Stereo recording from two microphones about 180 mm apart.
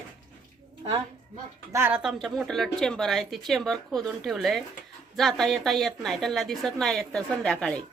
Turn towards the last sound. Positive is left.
turn(degrees=5)  # may be behind; listen again after turning